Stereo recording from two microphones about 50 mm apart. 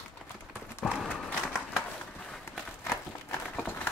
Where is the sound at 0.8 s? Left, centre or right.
Centre.